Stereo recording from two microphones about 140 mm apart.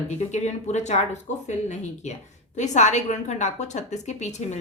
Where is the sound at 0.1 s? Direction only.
55° left (ahead or behind).